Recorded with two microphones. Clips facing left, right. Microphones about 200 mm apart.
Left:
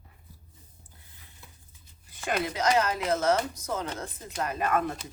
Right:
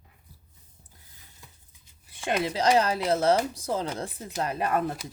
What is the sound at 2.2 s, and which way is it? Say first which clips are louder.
Speech: right 3 dB; 30° right (ahead or behind).